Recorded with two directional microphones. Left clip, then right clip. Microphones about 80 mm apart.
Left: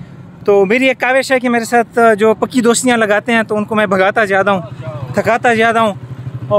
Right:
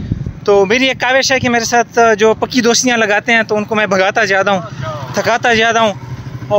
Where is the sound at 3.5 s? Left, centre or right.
Left.